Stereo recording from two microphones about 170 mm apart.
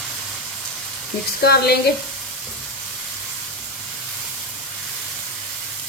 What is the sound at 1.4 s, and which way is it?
Speech, 70° left (ahead or behind).